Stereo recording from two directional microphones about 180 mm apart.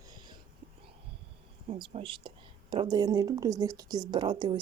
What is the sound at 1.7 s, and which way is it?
Speech, 30° right (ahead or behind).